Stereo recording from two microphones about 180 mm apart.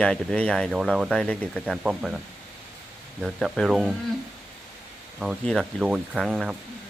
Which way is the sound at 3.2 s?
Centre (ahead or behind).